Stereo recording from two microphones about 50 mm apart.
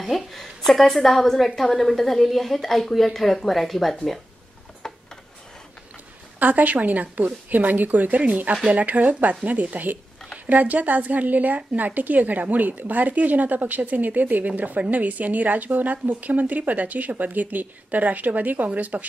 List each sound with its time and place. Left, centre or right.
0.0 s a woman's voice: centre
4.8 s tick-tock: centre
6.4 s a woman's voice: right